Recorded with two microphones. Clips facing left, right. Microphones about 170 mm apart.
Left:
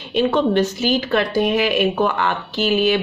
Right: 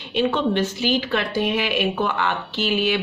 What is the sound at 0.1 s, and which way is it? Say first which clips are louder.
Speech: left 4 dB; 45° left (ahead or behind).